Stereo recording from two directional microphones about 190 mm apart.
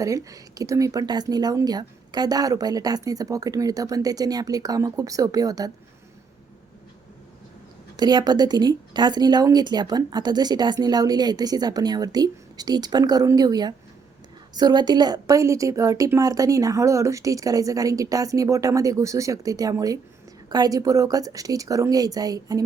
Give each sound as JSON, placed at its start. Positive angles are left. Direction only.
{"t": 0.0, "sound": "a woman's voice", "side_deg": -15}
{"t": 7.9, "sound": "a woman's voice", "side_deg": -20}